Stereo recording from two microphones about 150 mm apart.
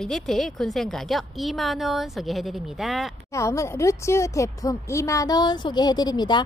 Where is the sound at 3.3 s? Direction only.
20° left (ahead or behind).